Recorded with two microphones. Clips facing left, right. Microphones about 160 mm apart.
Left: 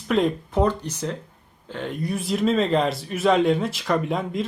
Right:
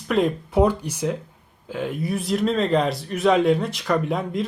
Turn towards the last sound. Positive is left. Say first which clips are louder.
# right 1 dB
turn(degrees=0)  # may be behind; listen again after turning